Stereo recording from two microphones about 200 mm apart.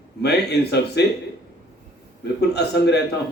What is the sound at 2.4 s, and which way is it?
Speech, 55° left (ahead or behind).